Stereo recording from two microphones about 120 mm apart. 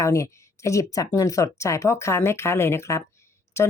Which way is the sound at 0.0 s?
25° left (ahead or behind).